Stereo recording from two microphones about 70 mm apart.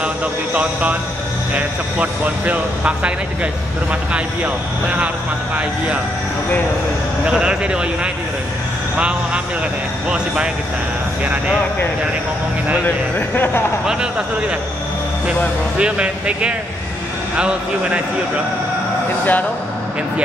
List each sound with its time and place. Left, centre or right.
0.6 s speech: centre
4.1 s speech: centre
7.2 s speech: centre
15.8 s speech: centre